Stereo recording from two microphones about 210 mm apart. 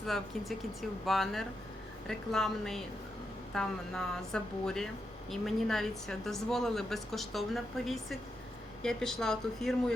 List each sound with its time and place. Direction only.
0.0 s a woman's voice: centre (ahead or behind)